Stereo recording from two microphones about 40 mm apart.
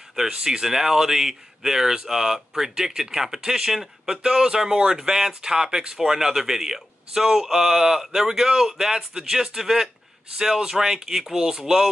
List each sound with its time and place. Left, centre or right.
0.1 s speech: centre